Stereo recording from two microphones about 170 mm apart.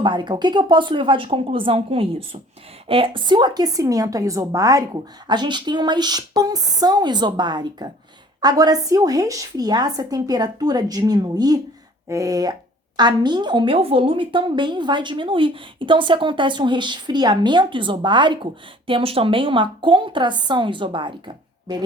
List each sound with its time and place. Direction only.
0.0 s a woman's voice: 25° right (ahead or behind)